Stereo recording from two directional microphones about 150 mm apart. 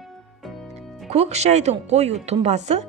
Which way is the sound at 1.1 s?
45° right (ahead or behind).